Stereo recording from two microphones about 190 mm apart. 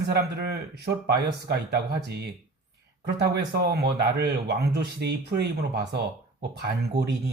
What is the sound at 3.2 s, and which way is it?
Speech, 60° right (ahead or behind).